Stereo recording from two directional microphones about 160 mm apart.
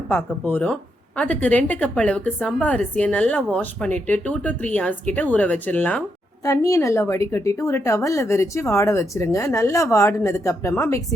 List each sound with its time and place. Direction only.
0.1 s a woman's voice: 10° left (ahead or behind)